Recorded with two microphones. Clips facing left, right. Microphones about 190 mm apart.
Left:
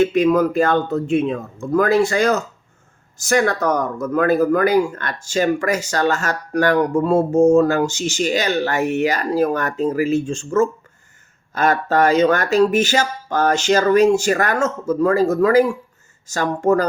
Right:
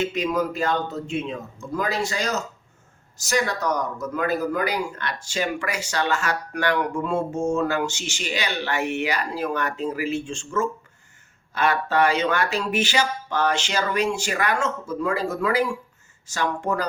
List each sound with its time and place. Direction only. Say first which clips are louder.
0.0 s a man's voice: left 9 dB; 55° left (ahead or behind)